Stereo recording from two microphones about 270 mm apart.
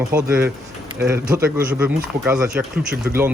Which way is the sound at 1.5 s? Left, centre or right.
Centre.